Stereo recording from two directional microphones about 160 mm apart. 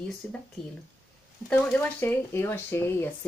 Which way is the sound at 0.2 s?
10° left (ahead or behind).